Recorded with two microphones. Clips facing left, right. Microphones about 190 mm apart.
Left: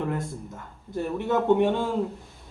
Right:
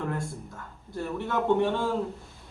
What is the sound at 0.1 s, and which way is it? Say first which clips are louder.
Speech: left 3 dB; 20° left (ahead or behind).